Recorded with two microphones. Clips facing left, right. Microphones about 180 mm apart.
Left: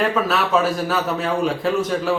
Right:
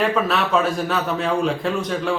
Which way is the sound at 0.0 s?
Centre (ahead or behind).